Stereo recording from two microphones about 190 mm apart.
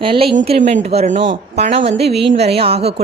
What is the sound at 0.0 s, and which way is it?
A woman's voice, 30° right (ahead or behind).